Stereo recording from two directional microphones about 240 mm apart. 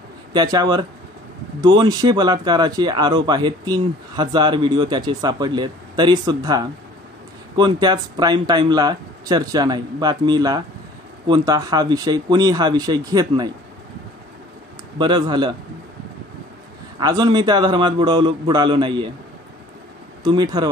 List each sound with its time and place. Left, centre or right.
0.3 s speech: centre
15.0 s a man's voice: centre
17.0 s a man's voice: centre
20.2 s speech: centre